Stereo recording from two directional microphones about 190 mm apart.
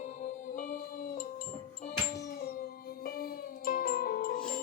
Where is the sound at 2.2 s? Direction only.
50° left (ahead or behind).